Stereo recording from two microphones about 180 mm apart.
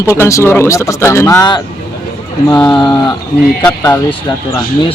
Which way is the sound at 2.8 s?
25° left (ahead or behind).